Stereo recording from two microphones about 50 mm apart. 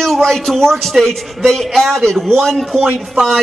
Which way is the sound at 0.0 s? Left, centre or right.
Centre.